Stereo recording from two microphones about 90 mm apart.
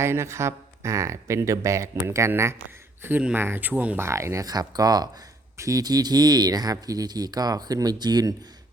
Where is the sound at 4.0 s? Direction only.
30° right (ahead or behind); by 8.3 s 45° right (ahead or behind).